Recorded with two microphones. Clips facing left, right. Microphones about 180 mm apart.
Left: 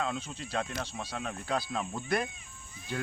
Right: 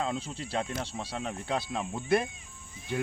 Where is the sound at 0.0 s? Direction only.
30° right (ahead or behind).